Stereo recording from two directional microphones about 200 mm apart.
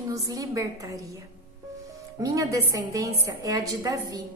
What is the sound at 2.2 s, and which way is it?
A woman's voice, 15° right (ahead or behind).